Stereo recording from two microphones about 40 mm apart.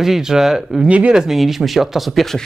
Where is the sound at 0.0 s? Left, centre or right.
Centre.